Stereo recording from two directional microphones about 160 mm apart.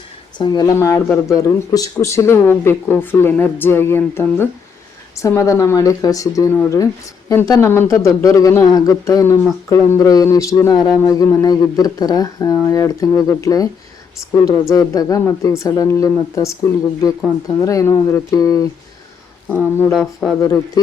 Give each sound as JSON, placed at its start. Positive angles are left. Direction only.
{"t": 0.3, "sound": "speech", "side_deg": 25}
{"t": 17.6, "sound": "speech", "side_deg": 20}
{"t": 19.9, "sound": "speech", "side_deg": 0}
{"t": 20.4, "sound": "speech", "side_deg": 20}